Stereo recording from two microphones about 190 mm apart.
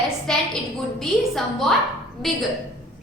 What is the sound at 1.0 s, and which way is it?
A woman's voice, centre (ahead or behind).